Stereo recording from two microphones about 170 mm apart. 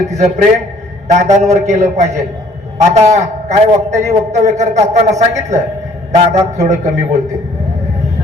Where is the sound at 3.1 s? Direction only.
40° right (ahead or behind).